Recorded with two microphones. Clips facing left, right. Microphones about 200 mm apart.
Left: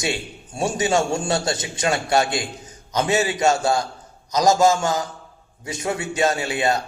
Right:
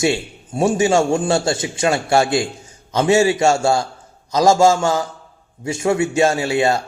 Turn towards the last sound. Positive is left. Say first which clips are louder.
# right 4 dB
turn(degrees=-25)  # may be behind; listen again after turning